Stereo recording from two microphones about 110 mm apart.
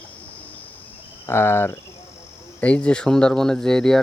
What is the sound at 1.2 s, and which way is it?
Speech, 20° left (ahead or behind).